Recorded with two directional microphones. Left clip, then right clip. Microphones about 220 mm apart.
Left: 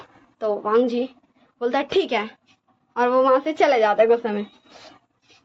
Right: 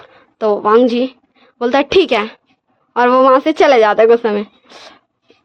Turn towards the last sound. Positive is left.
turn(degrees=-50)  # may be behind; listen again after turning